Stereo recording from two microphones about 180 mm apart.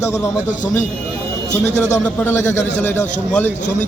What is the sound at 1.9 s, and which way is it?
A man's voice, 15° left (ahead or behind).